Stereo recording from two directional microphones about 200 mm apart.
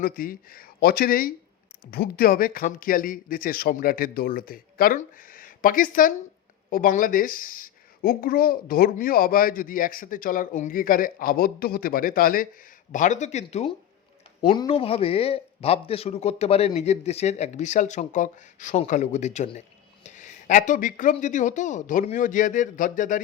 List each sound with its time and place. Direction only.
0.0 s speech: 45° left (ahead or behind)